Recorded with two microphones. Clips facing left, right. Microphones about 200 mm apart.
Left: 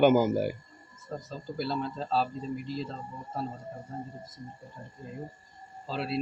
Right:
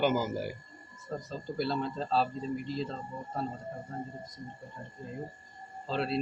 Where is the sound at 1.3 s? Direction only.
Centre (ahead or behind).